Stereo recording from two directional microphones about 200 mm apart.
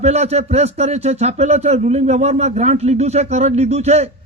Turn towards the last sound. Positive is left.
turn(degrees=-30)  # may be behind; listen again after turning